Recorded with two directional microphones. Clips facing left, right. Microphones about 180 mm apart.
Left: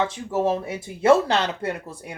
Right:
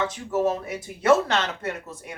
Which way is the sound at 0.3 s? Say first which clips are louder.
Right 1 dB; 25° left (ahead or behind).